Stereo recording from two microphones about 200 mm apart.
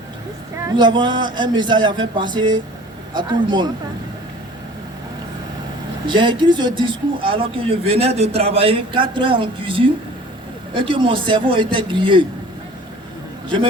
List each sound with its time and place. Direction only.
0.8 s speech: 20° right (ahead or behind)
6.1 s speech: 25° right (ahead or behind)